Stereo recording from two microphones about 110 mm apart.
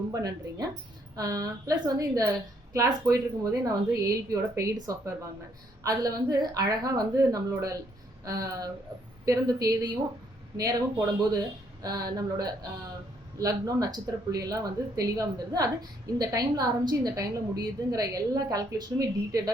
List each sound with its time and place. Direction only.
0.1 s a woman's voice: 35° right (ahead or behind)